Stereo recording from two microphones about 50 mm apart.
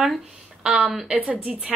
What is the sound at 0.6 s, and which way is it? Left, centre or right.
Speech, centre.